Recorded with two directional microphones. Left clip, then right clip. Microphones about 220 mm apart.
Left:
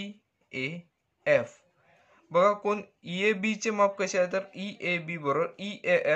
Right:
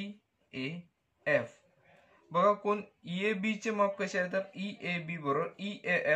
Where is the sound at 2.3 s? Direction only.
50° left (ahead or behind).